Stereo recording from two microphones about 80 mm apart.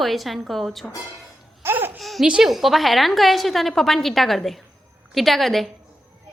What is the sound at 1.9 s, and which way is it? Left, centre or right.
A woman's voice, centre.